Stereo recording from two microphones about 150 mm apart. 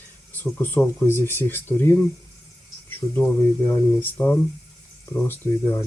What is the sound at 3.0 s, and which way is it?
Speech, 20° left (ahead or behind).